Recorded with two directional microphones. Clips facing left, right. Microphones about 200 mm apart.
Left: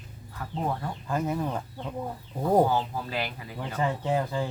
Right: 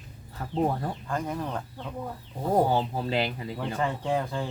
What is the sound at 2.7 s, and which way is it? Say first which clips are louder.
Speech: right 3 dB; 25° right (ahead or behind).